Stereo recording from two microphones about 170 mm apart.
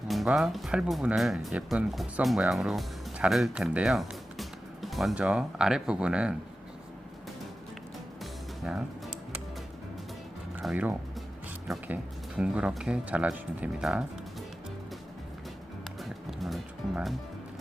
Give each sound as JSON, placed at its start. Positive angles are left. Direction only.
{"t": 0.1, "sound": "speech", "side_deg": 0}
{"t": 8.2, "sound": "music", "side_deg": -5}
{"t": 10.6, "sound": "speech", "side_deg": -5}
{"t": 16.0, "sound": "music", "side_deg": 0}